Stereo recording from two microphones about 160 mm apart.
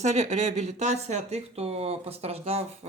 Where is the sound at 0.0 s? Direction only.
45° right (ahead or behind).